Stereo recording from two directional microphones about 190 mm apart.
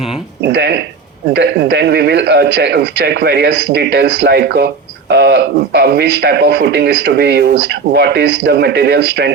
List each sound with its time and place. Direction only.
0.4 s a man's voice: 60° right (ahead or behind)